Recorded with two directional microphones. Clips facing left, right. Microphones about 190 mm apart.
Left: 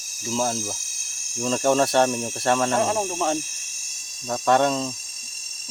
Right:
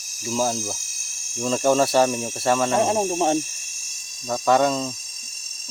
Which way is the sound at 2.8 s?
20° right (ahead or behind).